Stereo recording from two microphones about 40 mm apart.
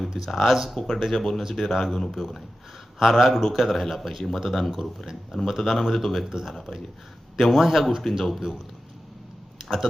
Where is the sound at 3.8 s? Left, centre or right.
Centre.